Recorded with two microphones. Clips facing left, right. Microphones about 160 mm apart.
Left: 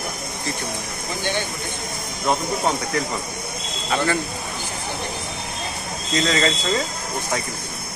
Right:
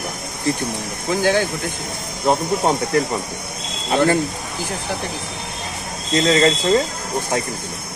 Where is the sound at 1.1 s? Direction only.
90° right.